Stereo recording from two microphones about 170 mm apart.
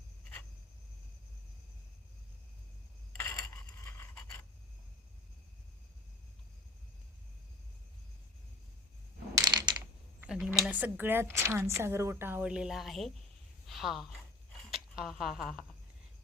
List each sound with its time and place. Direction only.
3.2 s scrape: 15° left (ahead or behind)
9.3 s crushing: 25° right (ahead or behind)
10.2 s a woman's voice: 5° right (ahead or behind)